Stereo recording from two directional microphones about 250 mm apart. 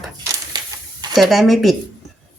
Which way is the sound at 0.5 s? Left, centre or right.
Centre.